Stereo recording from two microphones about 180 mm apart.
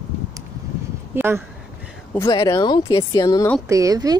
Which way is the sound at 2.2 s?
20° left (ahead or behind).